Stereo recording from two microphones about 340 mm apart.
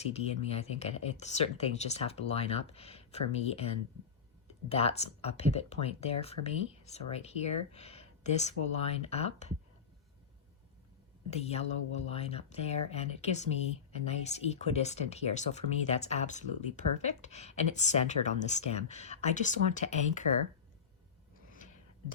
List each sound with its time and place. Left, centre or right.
0.0 s speech: centre
11.3 s speech: centre